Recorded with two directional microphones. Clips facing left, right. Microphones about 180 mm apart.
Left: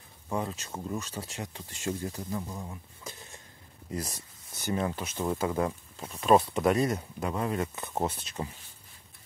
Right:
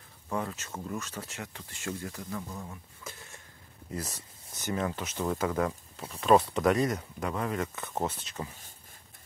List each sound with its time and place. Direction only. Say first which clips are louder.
0.3 s speech: left 1 dB; 20° left (ahead or behind)
4.0 s speech: left 1 dB; 30° left (ahead or behind)
5.2 s speech: even; 15° left (ahead or behind)
6.6 s speech: even; 30° left (ahead or behind)
7.9 s speech: left 2 dB; 10° left (ahead or behind)